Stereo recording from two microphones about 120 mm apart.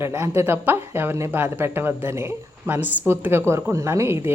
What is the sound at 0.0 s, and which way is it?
Speech, 20° right (ahead or behind).